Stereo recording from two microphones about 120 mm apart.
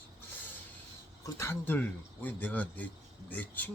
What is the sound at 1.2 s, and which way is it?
A man's voice, 20° left (ahead or behind).